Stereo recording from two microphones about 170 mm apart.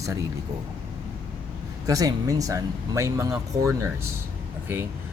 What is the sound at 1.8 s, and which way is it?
Speech, 20° right (ahead or behind).